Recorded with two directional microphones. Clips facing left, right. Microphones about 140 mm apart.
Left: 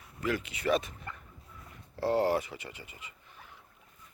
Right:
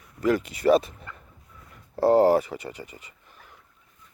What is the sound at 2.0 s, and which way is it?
Speech, 40° right (ahead or behind).